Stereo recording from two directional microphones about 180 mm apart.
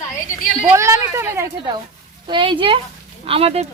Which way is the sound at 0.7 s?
15° right (ahead or behind).